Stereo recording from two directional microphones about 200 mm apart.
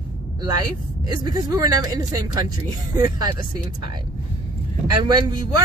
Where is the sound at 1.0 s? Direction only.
20° right (ahead or behind).